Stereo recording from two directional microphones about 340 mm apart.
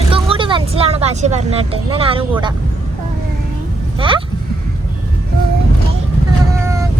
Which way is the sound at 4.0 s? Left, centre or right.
Centre.